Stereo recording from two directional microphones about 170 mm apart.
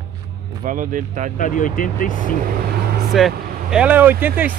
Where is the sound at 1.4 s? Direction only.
50° left (ahead or behind).